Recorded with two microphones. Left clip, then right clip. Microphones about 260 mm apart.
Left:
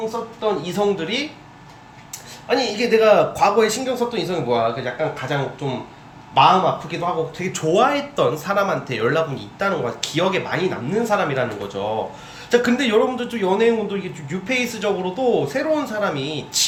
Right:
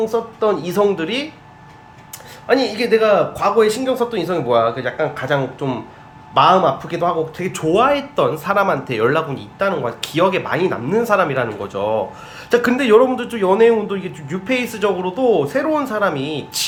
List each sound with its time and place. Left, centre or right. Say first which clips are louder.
0.0 s speech: right 6 dB; right
2.5 s speech: right 3 dB; centre